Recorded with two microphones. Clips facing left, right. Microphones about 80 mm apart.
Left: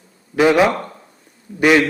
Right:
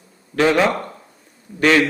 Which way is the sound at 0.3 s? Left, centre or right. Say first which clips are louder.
Left 3 dB; centre.